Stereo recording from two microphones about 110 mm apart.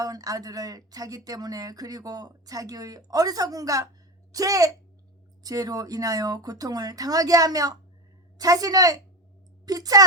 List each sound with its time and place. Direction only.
0.0 s a woman's voice: 35° right (ahead or behind)